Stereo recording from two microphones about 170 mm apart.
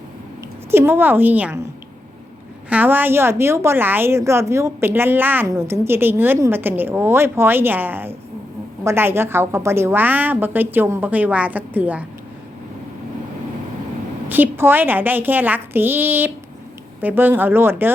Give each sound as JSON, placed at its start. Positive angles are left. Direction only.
{"t": 0.7, "sound": "a woman's voice", "side_deg": -15}
{"t": 2.6, "sound": "a woman's voice", "side_deg": -10}
{"t": 14.3, "sound": "a woman's voice", "side_deg": -10}